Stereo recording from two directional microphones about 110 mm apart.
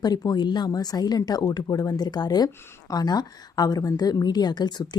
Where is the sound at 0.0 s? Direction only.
40° left (ahead or behind).